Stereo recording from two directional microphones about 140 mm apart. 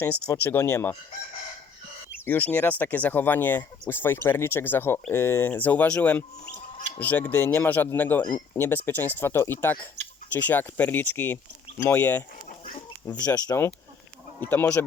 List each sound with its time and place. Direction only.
0.0 s speech: 15° left (ahead or behind)
2.2 s speech: 15° left (ahead or behind)
13.1 s speech: 25° left (ahead or behind)